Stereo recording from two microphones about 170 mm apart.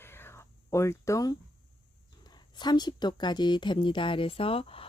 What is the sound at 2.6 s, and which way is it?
Speech, 25° left (ahead or behind).